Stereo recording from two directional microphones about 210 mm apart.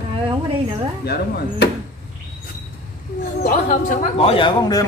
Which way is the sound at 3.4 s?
40° left (ahead or behind).